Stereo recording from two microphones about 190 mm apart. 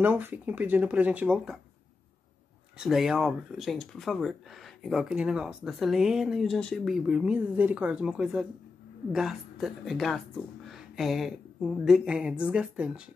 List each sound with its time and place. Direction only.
0.0 s speech: 10° right (ahead or behind)
2.8 s speech: centre (ahead or behind)